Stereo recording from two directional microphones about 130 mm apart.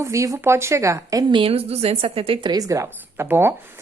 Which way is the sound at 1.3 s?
45° right (ahead or behind).